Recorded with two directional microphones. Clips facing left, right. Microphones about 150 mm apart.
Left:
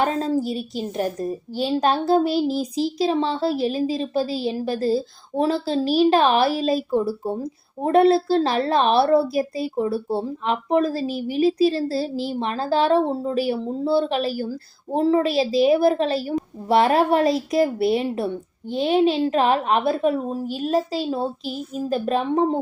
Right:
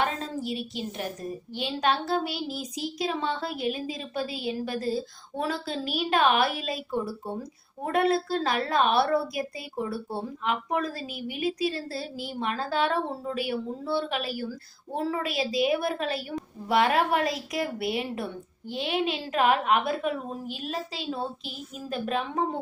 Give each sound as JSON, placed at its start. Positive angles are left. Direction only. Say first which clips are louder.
{"t": 0.0, "sound": "a woman's voice", "louder": "left 8 dB", "side_deg": 40}